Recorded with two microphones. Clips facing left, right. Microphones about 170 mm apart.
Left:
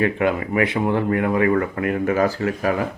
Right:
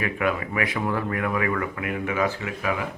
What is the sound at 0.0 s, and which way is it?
Speech, 30° left (ahead or behind).